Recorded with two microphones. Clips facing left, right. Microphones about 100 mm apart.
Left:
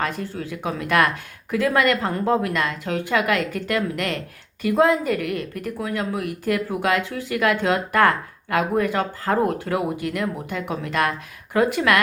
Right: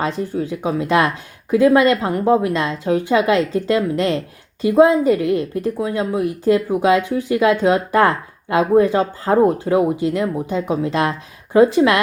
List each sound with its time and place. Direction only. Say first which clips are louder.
0.0 s a woman's voice: right 5 dB; 20° right (ahead or behind)